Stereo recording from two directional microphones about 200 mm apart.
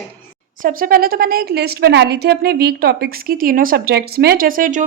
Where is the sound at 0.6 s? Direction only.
45° right (ahead or behind).